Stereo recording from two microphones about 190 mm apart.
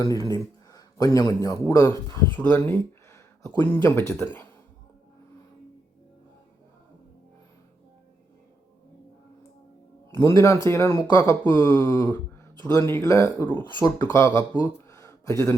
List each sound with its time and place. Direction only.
0.0 s a man's voice: 15° left (ahead or behind)
10.2 s speech: 15° left (ahead or behind)